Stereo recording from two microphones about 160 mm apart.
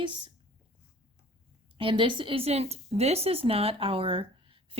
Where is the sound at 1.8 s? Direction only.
35° right (ahead or behind).